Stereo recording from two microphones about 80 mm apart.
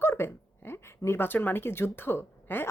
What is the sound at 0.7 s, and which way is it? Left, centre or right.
A woman's voice, left.